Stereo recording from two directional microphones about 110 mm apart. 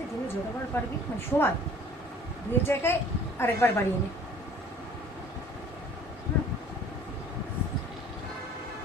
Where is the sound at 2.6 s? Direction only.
20° left (ahead or behind).